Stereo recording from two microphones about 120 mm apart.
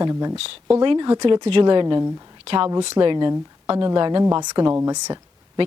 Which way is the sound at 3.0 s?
40° right (ahead or behind).